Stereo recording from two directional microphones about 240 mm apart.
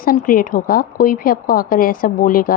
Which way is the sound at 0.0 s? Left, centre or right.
Left.